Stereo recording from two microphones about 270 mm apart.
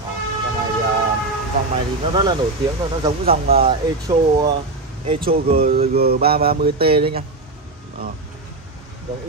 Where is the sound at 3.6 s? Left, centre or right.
Centre.